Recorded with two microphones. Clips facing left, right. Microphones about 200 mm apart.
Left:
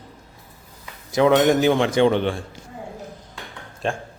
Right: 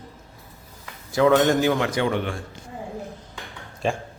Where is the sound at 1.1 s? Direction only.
20° left (ahead or behind).